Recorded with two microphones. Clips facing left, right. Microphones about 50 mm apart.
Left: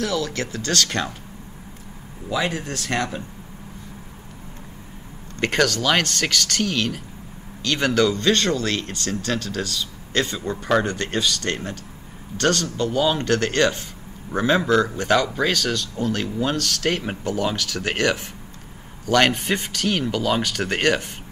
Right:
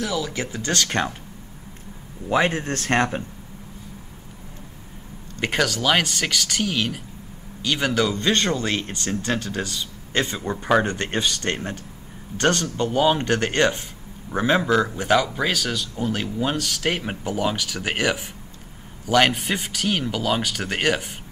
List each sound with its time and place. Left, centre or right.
0.0 s speech: centre; by 1.1 s right
2.2 s a man's voice: right
5.4 s speech: centre